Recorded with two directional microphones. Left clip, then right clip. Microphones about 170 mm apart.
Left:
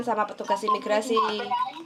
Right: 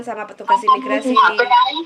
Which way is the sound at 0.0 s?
10° left (ahead or behind).